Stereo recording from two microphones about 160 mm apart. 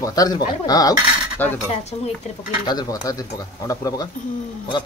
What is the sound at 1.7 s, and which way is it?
Speech, 40° left (ahead or behind).